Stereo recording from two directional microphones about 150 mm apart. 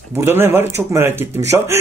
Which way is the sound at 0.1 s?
15° right (ahead or behind).